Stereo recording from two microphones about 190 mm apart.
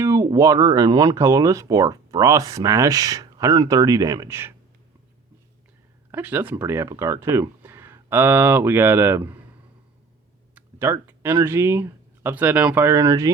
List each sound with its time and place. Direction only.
0.0 s speech: 15° right (ahead or behind)
6.1 s speech: 10° right (ahead or behind)
10.5 s speech: 15° right (ahead or behind)